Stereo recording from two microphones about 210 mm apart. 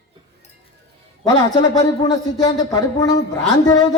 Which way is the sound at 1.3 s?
20° left (ahead or behind).